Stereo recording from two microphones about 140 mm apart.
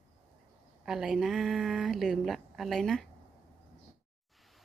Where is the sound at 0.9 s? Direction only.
5° right (ahead or behind).